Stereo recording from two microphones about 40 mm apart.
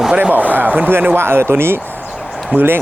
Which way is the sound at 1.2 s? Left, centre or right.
Right.